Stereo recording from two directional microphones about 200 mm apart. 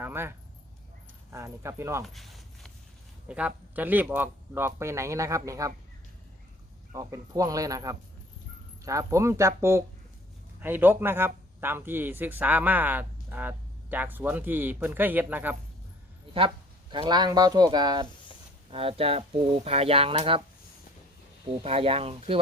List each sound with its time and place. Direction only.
0.0 s a man's voice: 10° right (ahead or behind)
2.1 s walk: centre (ahead or behind)
3.2 s a man's voice: 5° right (ahead or behind)
6.9 s a man's voice: 15° right (ahead or behind)
16.9 s speech: 25° right (ahead or behind)
21.4 s speech: 30° right (ahead or behind)